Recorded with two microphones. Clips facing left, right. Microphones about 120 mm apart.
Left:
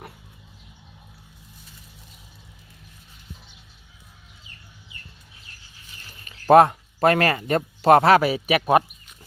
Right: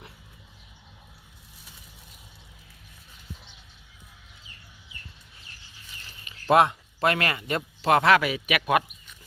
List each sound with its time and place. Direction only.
6.2 s speech: 40° left (ahead or behind)